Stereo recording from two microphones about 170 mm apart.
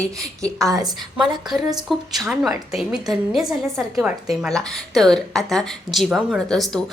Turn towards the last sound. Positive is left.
turn(degrees=5)  # may be behind; listen again after turning